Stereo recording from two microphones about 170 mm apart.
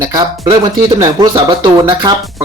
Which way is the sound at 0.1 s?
20° right (ahead or behind).